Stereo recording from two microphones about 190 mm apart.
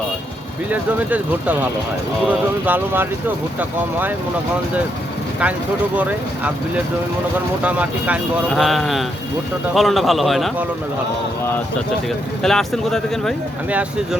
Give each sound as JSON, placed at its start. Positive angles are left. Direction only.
{"t": 0.7, "sound": "speech", "side_deg": -10}
{"t": 6.0, "sound": "speech", "side_deg": -10}
{"t": 7.6, "sound": "speech", "side_deg": -10}
{"t": 12.4, "sound": "speech", "side_deg": 0}